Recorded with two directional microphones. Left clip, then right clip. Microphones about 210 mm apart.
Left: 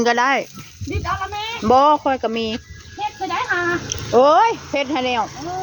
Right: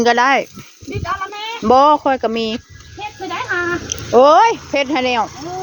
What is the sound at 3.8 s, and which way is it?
Speech, 25° right (ahead or behind).